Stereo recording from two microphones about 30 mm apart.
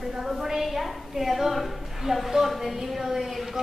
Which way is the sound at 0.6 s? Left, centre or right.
Centre.